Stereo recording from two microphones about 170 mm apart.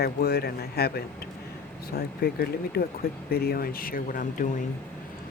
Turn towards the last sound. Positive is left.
turn(degrees=55)  # may be behind; listen again after turning